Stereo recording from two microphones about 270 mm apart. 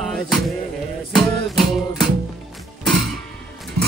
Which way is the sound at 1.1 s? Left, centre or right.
Centre.